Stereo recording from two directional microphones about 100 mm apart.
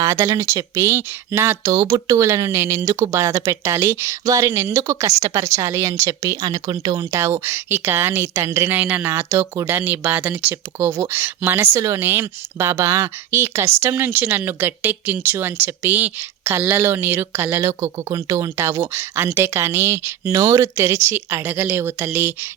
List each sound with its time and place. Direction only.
0.0 s speech: 30° right (ahead or behind)